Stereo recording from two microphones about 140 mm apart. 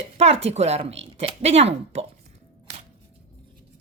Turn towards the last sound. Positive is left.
turn(degrees=-50)  # may be behind; listen again after turning